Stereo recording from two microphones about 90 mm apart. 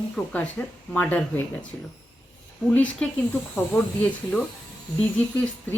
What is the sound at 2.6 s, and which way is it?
Speech, 15° left (ahead or behind).